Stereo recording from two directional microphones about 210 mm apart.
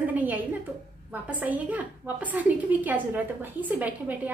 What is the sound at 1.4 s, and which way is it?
A woman's voice, 5° right (ahead or behind).